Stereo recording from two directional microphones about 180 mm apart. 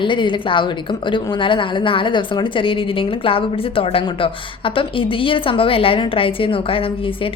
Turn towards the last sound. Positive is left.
turn(degrees=30)  # may be behind; listen again after turning